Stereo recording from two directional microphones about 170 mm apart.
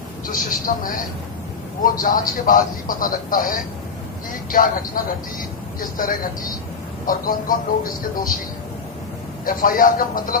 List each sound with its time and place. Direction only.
0.3 s speech: 55° left (ahead or behind)
9.5 s speech: 55° left (ahead or behind)